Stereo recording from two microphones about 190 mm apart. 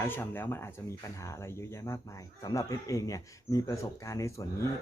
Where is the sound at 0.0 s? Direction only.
10° left (ahead or behind).